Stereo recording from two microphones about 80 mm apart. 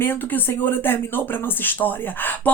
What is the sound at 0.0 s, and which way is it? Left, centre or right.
Speech, left.